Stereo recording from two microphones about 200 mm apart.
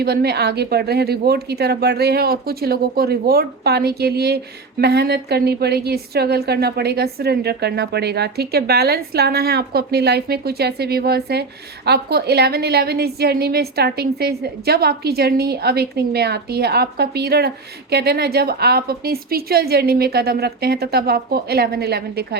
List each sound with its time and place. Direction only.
0.0 s a woman's voice: 50° right (ahead or behind)